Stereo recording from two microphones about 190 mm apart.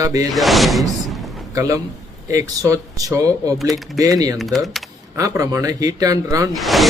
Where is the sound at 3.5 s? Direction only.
Centre (ahead or behind).